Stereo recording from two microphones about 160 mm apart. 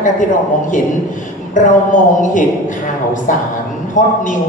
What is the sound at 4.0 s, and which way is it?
Speech, 50° left (ahead or behind).